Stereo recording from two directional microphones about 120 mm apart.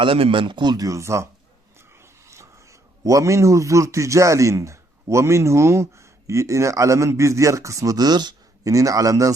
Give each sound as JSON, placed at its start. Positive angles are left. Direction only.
{"t": 0.0, "sound": "a man's voice", "side_deg": -45}